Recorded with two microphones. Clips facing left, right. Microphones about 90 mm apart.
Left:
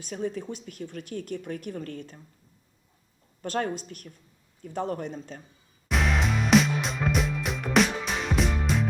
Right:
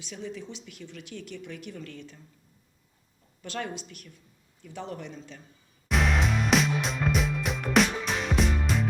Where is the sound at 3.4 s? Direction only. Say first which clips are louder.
Left 6 dB; 45° left (ahead or behind).